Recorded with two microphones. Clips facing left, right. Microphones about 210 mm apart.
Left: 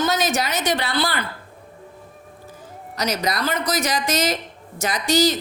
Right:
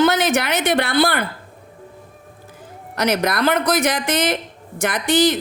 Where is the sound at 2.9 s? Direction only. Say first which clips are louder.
Right 5 dB; 55° right (ahead or behind).